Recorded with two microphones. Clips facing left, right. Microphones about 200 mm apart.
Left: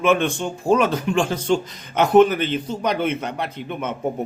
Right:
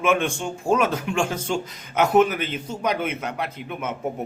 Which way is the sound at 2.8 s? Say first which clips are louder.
Left 1 dB; 5° right (ahead or behind).